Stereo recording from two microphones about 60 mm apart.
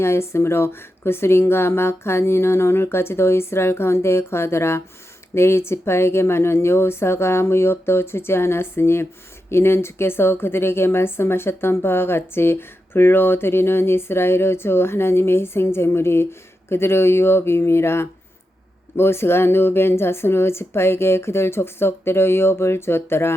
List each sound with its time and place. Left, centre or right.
0.0 s a woman's voice: left